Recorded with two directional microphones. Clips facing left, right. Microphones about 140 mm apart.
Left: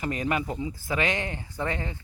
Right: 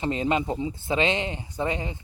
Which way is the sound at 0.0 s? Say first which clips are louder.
Right 3 dB; 25° right (ahead or behind).